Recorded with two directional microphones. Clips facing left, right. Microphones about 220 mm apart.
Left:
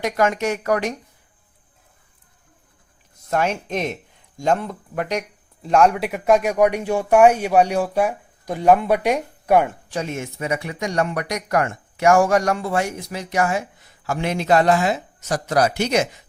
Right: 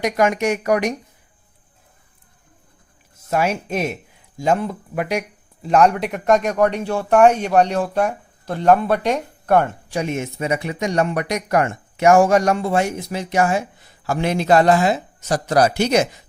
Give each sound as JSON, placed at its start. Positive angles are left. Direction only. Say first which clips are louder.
{"t": 0.0, "sound": "speech", "louder": "right 2 dB", "side_deg": -15}
{"t": 3.2, "sound": "speech", "louder": "right 1 dB", "side_deg": -5}
{"t": 9.9, "sound": "speech", "louder": "right 3 dB", "side_deg": -15}